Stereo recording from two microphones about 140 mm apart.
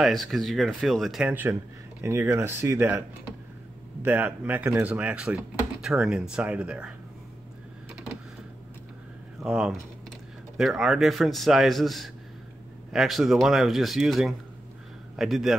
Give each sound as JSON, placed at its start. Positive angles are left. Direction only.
{"t": 0.0, "sound": "a man's voice", "side_deg": 0}
{"t": 1.3, "sound": "speech", "side_deg": -15}
{"t": 4.0, "sound": "speech", "side_deg": -15}
{"t": 9.4, "sound": "a man's voice", "side_deg": -5}